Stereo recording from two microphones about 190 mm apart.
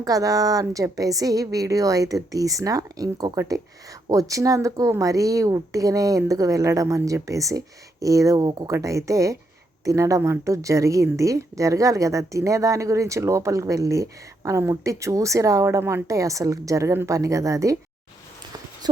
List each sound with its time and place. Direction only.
0.0 s a woman's voice: 20° right (ahead or behind)